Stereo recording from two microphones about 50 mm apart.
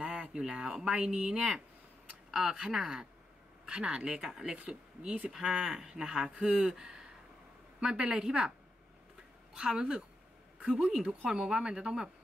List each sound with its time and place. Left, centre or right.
0.0 s a sound: centre
0.7 s speech: centre
9.6 s speech: centre